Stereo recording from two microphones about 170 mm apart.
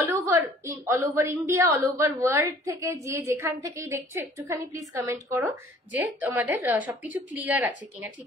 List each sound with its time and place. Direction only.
0.0 s a woman's voice: 15° right (ahead or behind)